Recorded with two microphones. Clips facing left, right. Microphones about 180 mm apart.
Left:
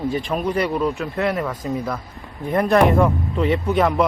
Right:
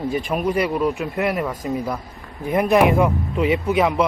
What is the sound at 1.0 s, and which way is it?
Speech, 15° right (ahead or behind).